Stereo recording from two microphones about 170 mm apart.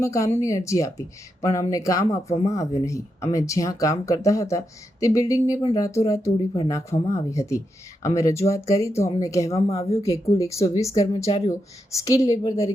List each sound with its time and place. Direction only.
0.0 s speech: 15° left (ahead or behind)
11.3 s speech: 30° left (ahead or behind)
11.9 s speech: 20° left (ahead or behind)